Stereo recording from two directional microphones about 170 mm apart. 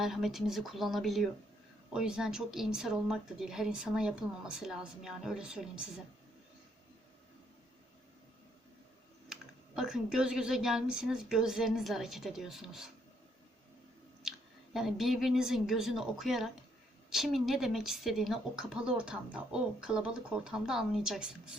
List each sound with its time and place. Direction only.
0.0 s a woman's voice: centre (ahead or behind)
9.3 s a woman's voice: 5° right (ahead or behind)
14.2 s a woman's voice: centre (ahead or behind)